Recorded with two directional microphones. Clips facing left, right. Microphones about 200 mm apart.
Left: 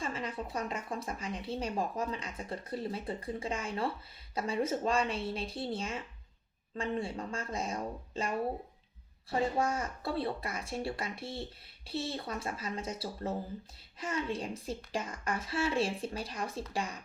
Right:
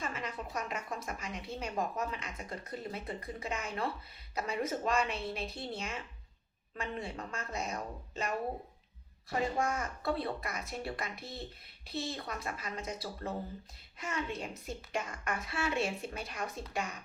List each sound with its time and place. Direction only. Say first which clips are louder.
0.0 s a woman's voice: left 2 dB; 30° left (ahead or behind)